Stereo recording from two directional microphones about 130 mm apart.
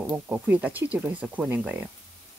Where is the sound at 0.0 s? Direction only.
15° right (ahead or behind).